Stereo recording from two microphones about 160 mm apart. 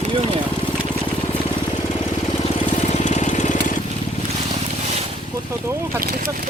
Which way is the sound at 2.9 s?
50° left (ahead or behind).